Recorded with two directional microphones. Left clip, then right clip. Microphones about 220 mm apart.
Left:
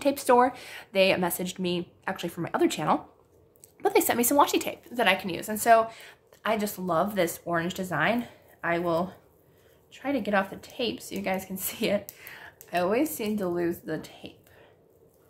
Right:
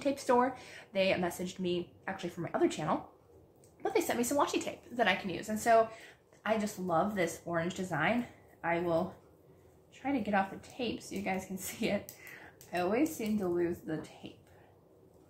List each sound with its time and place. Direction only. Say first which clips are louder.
0.0 s a woman's voice: left 8 dB; 45° left (ahead or behind)